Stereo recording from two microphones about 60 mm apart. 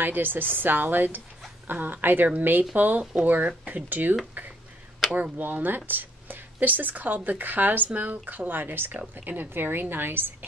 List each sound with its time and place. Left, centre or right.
0.0 s speech: right